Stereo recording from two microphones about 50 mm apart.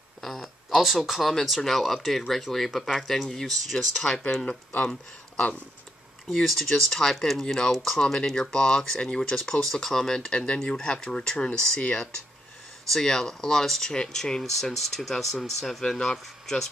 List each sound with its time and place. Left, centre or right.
0.2 s a sound: centre
0.7 s speech: centre
6.2 s speech: centre
9.6 s speech: centre
12.8 s speech: centre